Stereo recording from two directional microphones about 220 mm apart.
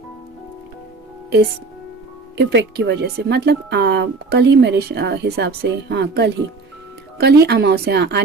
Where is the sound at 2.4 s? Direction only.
50° right (ahead or behind).